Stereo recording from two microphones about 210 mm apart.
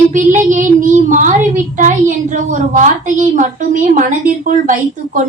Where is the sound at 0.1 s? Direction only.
35° right (ahead or behind).